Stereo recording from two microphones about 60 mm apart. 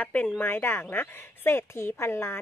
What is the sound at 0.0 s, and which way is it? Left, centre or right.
Speech, left.